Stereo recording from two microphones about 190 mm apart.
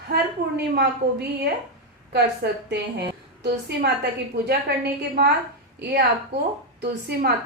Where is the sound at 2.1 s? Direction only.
60° right (ahead or behind).